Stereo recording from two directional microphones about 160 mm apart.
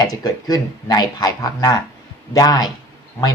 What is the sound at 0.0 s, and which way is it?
A man's voice, 25° left (ahead or behind).